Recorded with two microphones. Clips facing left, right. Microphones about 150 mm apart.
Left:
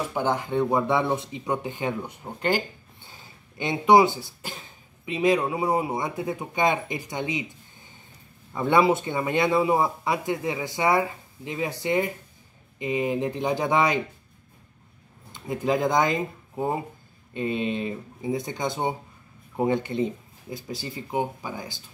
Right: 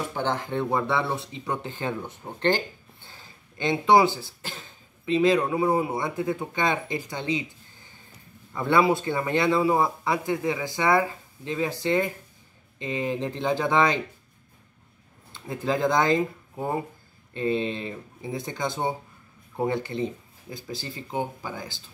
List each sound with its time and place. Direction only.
0.1 s a man's voice: 10° left (ahead or behind)
15.3 s a man's voice: 15° left (ahead or behind)